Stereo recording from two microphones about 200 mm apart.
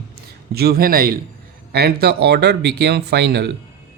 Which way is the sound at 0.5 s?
50° right (ahead or behind).